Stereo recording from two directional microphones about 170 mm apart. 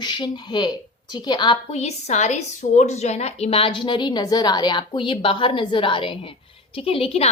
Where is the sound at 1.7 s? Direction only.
40° left (ahead or behind).